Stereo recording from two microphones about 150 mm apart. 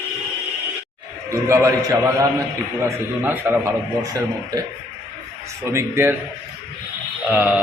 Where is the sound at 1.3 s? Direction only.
20° right (ahead or behind).